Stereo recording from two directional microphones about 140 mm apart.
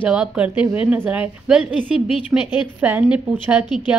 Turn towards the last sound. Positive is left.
turn(degrees=-10)  # may be behind; listen again after turning